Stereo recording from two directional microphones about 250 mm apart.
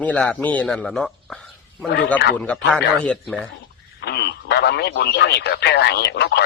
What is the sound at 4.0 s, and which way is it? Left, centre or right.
Speech, left.